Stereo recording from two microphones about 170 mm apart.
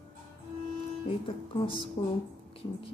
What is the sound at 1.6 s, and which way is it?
Speech, 30° left (ahead or behind).